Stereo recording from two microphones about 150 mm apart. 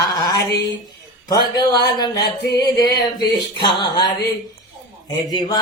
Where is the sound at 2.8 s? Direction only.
25° left (ahead or behind).